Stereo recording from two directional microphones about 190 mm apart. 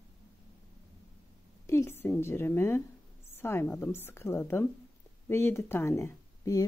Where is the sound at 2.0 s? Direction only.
10° left (ahead or behind).